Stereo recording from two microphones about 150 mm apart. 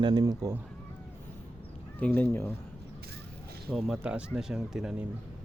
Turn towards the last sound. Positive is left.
turn(degrees=-5)  # may be behind; listen again after turning